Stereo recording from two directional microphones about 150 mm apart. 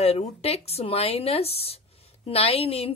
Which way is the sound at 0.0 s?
45° left (ahead or behind).